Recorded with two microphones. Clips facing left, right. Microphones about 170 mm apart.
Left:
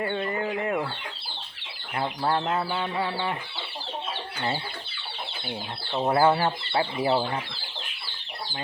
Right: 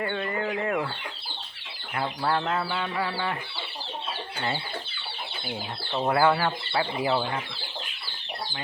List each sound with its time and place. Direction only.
0.0 s bird: 25° left (ahead or behind)
2.0 s speech: 20° left (ahead or behind)
6.1 s speech: 25° left (ahead or behind)
7.0 s speech: 35° left (ahead or behind)